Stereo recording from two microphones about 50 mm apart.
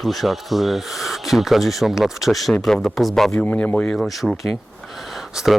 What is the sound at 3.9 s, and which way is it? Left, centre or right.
Speech, centre.